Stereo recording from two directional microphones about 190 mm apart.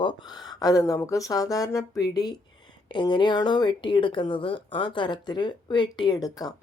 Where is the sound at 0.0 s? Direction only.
25° left (ahead or behind).